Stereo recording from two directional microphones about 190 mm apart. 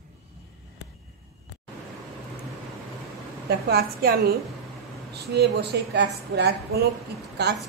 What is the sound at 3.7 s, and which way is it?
A woman's voice, 55° right (ahead or behind).